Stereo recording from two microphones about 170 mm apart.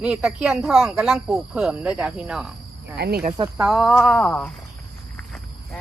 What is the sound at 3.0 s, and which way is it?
Speech, 80° right.